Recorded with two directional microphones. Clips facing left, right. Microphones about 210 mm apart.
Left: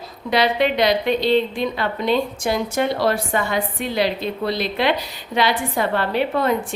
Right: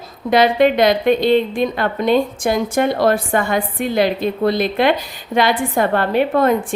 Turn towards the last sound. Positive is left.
turn(degrees=-50)  # may be behind; listen again after turning